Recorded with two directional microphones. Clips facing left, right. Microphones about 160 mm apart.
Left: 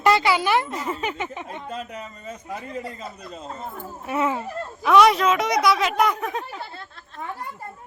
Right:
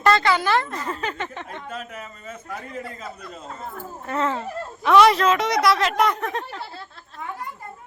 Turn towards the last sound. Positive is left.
turn(degrees=0)  # may be behind; listen again after turning